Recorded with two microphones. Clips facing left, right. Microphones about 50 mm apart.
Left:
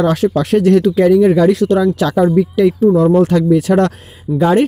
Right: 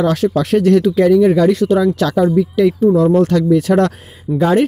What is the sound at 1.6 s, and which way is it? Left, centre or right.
Speech, centre.